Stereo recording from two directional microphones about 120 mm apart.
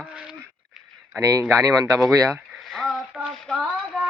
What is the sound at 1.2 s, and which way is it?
Speech, 30° right (ahead or behind).